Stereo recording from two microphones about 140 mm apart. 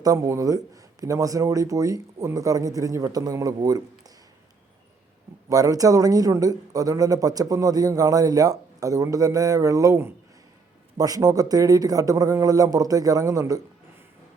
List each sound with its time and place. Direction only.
0.0 s a man's voice: 25° right (ahead or behind)
5.5 s a man's voice: 25° right (ahead or behind)